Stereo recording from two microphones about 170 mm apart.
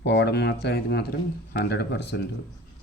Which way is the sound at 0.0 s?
90° left.